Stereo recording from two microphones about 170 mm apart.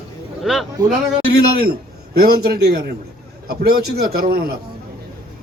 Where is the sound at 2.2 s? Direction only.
65° right (ahead or behind).